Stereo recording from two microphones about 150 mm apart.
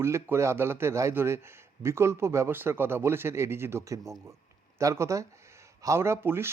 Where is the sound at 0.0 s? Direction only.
20° right (ahead or behind).